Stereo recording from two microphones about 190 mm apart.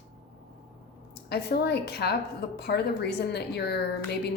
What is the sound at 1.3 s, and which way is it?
Speech, 60° left (ahead or behind).